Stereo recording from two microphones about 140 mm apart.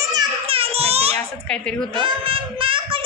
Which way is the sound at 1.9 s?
35° right (ahead or behind).